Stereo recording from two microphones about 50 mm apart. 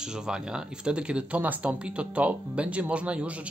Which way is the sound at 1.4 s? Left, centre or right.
Right.